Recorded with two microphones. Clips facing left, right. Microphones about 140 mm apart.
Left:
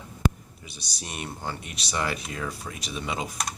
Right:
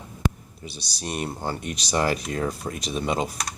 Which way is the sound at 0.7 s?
35° right (ahead or behind).